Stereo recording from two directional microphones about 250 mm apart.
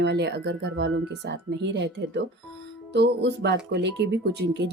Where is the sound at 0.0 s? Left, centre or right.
Right.